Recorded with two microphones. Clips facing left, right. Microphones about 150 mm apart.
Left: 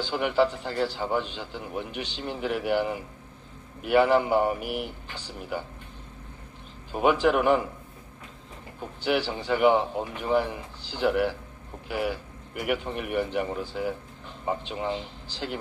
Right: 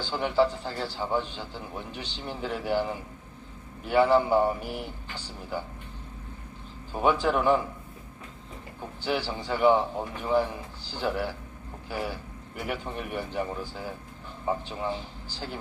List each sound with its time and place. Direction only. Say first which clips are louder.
0.0 s a man's voice: left 1 dB; 15° left (ahead or behind)
6.9 s a man's voice: left 2 dB; 15° left (ahead or behind)
9.0 s a man's voice: left 3 dB; 15° left (ahead or behind)